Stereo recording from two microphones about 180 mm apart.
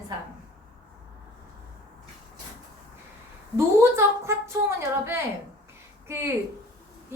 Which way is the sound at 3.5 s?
15° right (ahead or behind).